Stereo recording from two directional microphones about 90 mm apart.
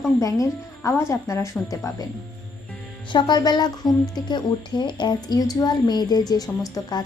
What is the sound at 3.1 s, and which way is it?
A woman's voice, 50° left (ahead or behind).